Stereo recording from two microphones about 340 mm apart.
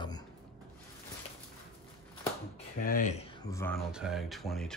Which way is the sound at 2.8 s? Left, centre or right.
Left.